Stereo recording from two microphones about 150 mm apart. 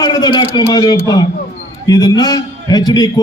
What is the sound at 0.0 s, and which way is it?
A man's voice, 25° left (ahead or behind).